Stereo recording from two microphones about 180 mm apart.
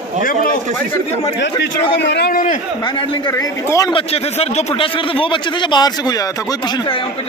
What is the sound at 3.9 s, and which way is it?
A man's voice, 35° left (ahead or behind).